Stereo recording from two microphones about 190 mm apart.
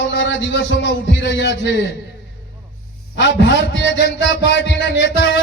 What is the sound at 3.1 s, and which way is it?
A man's voice, 70° left (ahead or behind).